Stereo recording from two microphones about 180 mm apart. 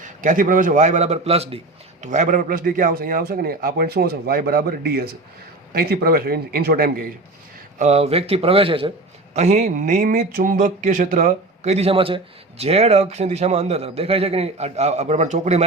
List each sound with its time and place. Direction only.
0.0 s a man's voice: 45° right (ahead or behind)
7.8 s speech: 35° right (ahead or behind)